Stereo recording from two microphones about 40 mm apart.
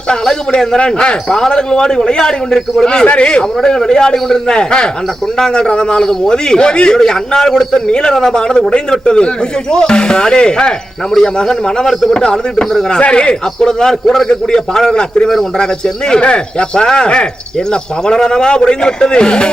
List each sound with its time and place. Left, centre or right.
0.1 s a man's voice: centre
3.6 s a man's voice: centre